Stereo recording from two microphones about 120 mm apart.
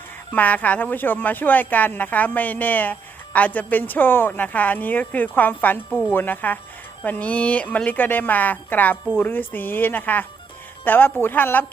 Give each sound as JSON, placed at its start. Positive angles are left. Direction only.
{"t": 0.3, "sound": "speech", "side_deg": 15}